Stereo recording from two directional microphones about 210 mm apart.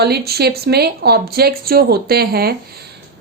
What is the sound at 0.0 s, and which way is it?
A woman's voice, 50° right (ahead or behind).